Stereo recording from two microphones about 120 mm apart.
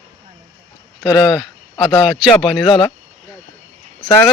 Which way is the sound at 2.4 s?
5° right (ahead or behind).